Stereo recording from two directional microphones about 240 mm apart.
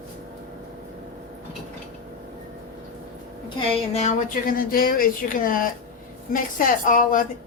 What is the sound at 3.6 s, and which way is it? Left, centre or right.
Speech, left.